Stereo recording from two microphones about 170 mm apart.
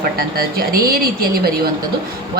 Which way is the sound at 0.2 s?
65° right (ahead or behind).